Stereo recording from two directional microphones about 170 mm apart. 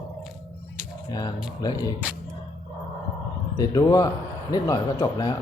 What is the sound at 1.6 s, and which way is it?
Speech, 20° left (ahead or behind).